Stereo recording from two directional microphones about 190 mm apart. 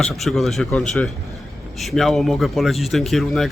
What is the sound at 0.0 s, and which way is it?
A man's voice, centre (ahead or behind).